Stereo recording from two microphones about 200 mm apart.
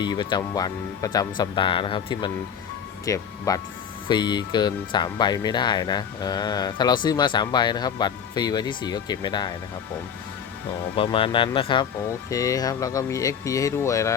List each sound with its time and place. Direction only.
0.0 s speech: 20° left (ahead or behind)
10.9 s speech: 25° left (ahead or behind)